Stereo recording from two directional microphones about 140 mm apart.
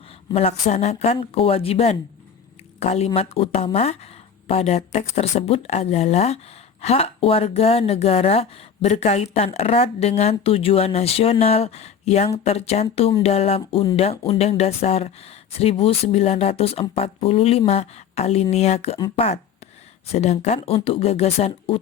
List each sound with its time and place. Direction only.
0.6 s speech: 55° left (ahead or behind)
20.7 s speech: 40° left (ahead or behind)